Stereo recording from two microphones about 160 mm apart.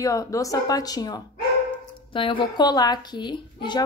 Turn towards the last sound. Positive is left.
turn(degrees=30)  # may be behind; listen again after turning